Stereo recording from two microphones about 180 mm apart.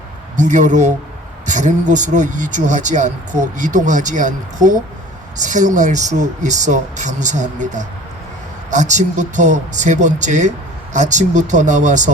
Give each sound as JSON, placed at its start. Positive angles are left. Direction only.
{"t": 0.3, "sound": "speech", "side_deg": -45}